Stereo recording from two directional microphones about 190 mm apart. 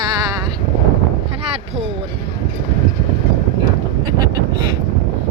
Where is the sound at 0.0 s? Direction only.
20° right (ahead or behind).